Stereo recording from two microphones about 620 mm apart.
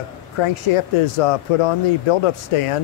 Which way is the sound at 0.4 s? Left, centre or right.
Left.